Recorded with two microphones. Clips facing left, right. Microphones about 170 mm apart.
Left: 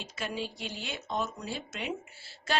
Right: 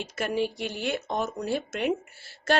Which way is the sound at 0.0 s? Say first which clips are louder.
Right 8 dB; 60° right (ahead or behind).